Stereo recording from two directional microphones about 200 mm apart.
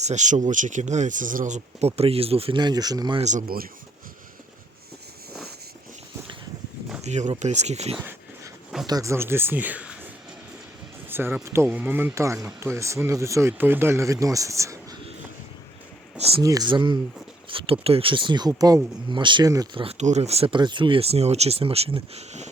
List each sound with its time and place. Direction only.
0.0 s speech: 35° right (ahead or behind); by 3.2 s 20° right (ahead or behind)
3.2 s speech: 35° right (ahead or behind)
7.0 s speech: 35° right (ahead or behind)
8.9 s speech: 15° right (ahead or behind)
11.1 s speech: 10° right (ahead or behind)
16.1 s speech: 30° right (ahead or behind)
16.4 s speech: 20° right (ahead or behind)